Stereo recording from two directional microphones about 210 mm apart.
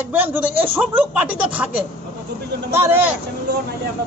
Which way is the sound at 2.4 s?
50° right (ahead or behind).